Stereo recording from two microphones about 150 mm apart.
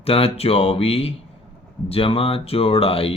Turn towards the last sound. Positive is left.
turn(degrees=40)  # may be behind; listen again after turning